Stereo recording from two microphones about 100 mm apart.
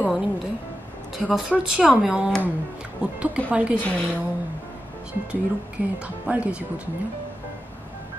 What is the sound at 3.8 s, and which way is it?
Speech, 15° left (ahead or behind).